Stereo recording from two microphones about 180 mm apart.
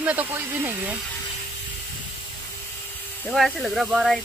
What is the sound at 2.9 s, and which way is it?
Speech, 5° left (ahead or behind).